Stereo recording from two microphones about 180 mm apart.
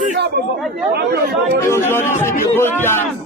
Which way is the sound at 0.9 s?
65° right (ahead or behind).